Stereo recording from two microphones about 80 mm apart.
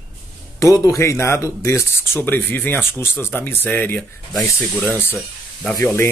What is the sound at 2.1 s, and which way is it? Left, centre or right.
Speech, left.